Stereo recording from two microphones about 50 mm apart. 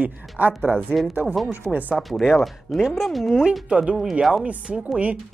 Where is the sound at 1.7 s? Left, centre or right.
Right.